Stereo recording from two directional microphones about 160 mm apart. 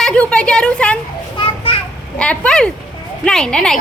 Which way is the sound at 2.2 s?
5° left (ahead or behind).